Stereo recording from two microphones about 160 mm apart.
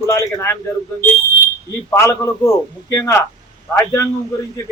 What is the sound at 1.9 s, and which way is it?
A man's voice, 15° left (ahead or behind).